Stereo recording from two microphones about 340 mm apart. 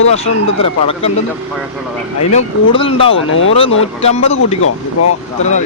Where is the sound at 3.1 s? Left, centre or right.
Left.